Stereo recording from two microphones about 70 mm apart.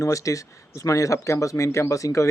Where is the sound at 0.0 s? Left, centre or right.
Left.